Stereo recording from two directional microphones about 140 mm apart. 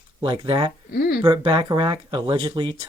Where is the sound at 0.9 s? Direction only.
90° left.